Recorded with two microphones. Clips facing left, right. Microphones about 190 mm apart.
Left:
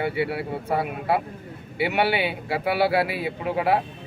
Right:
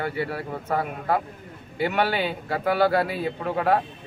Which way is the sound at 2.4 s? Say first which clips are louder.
Right 2 dB; 10° left (ahead or behind).